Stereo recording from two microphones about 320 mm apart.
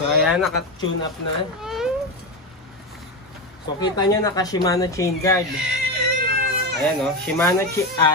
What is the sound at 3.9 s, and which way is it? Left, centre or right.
Speech, centre.